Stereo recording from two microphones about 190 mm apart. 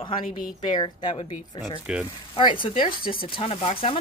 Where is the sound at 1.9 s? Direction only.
5° right (ahead or behind).